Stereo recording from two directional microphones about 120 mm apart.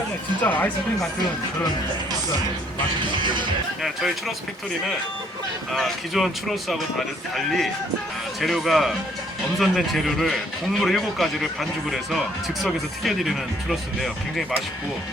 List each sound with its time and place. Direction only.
0.4 s speech: 15° left (ahead or behind)
3.1 s speech: 40° right (ahead or behind)
5.7 s speech: centre (ahead or behind)
12.6 s speech: centre (ahead or behind)